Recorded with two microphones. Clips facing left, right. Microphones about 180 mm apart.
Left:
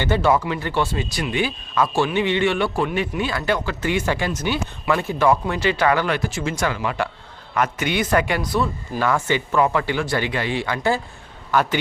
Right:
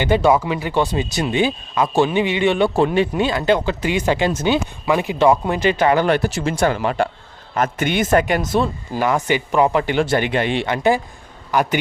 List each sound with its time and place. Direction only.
0.0 s speech: 15° right (ahead or behind)
6.1 s speech: 65° right (ahead or behind)
6.8 s speech: 30° right (ahead or behind)
7.6 s speech: 50° right (ahead or behind)
8.4 s speech: 25° right (ahead or behind)
9.0 s speech: 15° right (ahead or behind)